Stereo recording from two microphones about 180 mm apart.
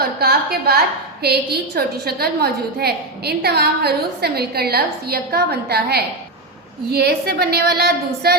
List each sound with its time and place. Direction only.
0.2 s a woman's voice: 60° right (ahead or behind)